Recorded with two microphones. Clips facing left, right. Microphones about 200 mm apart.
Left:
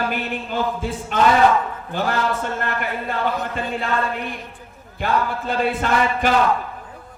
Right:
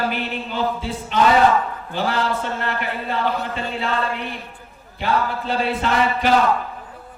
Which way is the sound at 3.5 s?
50° left (ahead or behind).